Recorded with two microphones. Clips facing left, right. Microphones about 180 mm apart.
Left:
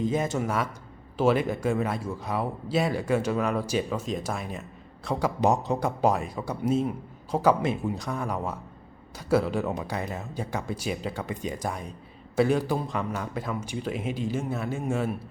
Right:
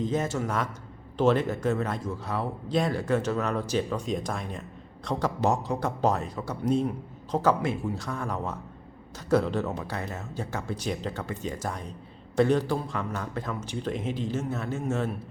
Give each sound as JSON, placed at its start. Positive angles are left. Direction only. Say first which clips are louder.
{"t": 0.0, "sound": "speech", "louder": "left 1 dB", "side_deg": 10}